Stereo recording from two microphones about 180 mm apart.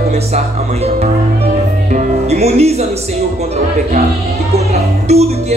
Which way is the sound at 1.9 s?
35° right (ahead or behind).